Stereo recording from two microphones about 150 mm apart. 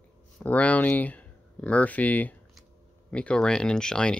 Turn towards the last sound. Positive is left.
turn(degrees=5)  # may be behind; listen again after turning